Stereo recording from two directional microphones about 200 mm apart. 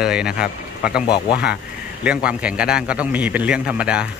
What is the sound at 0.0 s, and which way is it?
Speech, 5° right (ahead or behind).